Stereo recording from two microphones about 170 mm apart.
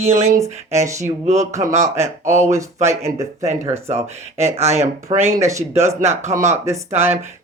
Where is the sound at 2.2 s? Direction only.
45° right (ahead or behind).